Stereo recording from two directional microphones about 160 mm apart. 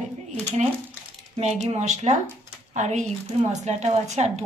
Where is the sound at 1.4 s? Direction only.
45° right (ahead or behind).